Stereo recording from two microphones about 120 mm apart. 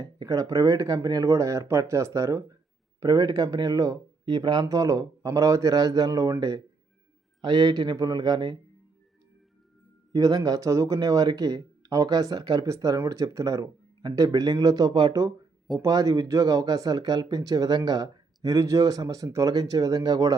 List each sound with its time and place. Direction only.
0.0 s speech: 30° right (ahead or behind)
10.1 s speech: 30° right (ahead or behind)